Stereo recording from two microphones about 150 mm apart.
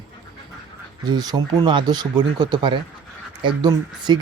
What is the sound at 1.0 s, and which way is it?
Speech, 25° right (ahead or behind).